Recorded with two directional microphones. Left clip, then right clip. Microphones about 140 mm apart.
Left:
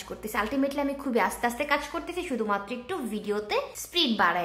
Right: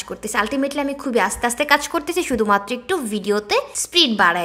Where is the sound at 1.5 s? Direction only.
40° right (ahead or behind).